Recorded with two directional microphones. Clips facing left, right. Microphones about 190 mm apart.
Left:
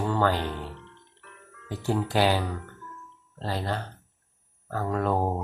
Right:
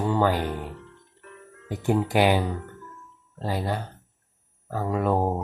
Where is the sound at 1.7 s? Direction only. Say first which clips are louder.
Right 4 dB; 15° right (ahead or behind).